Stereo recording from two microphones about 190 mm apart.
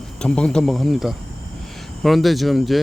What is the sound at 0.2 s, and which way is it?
Speech, 5° left (ahead or behind).